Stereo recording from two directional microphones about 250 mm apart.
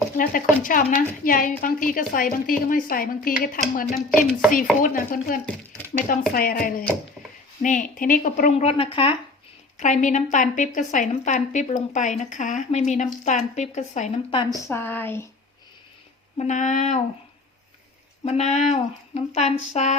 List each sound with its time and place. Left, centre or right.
0.1 s a woman's voice: left
4.3 s chopping: centre
4.8 s a woman's voice: left
14.5 s speech: centre
16.4 s speech: left
18.3 s speech: left